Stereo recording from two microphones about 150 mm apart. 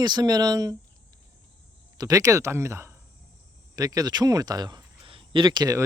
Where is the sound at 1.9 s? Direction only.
20° right (ahead or behind).